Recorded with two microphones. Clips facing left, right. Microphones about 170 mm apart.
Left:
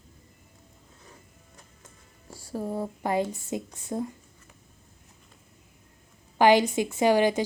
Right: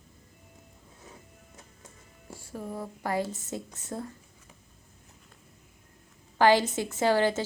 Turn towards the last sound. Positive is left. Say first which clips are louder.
# left 3 dB
turn(degrees=15)  # may be behind; listen again after turning